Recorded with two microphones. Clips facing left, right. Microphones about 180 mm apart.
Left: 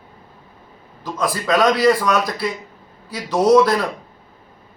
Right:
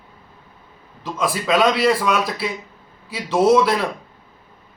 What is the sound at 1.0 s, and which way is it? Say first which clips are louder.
Speech: even; 5° right (ahead or behind).